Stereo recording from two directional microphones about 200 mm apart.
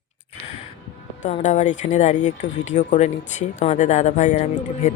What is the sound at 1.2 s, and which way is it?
Speech, 35° left (ahead or behind).